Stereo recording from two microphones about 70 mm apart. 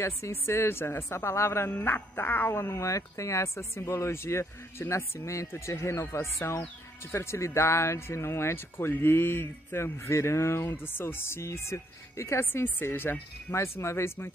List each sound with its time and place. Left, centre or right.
0.0 s speech: left
1.7 s speech: left
13.5 s speech: left